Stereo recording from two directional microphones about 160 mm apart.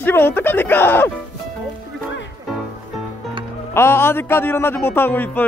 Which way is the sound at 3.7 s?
15° left (ahead or behind).